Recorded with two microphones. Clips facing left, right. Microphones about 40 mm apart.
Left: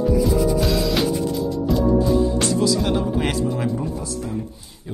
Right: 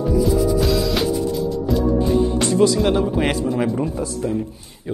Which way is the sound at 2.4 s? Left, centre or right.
Centre.